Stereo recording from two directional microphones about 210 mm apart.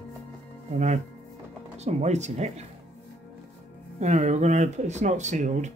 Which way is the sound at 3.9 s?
30° right (ahead or behind).